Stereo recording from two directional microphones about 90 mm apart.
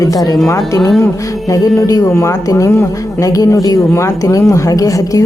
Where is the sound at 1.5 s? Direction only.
40° left (ahead or behind).